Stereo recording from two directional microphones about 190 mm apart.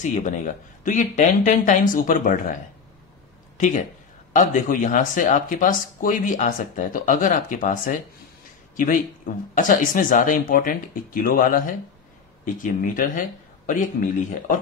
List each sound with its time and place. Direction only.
0.0 s speech: 40° left (ahead or behind)
3.5 s speech: 40° left (ahead or behind)
12.8 s speech: 45° left (ahead or behind)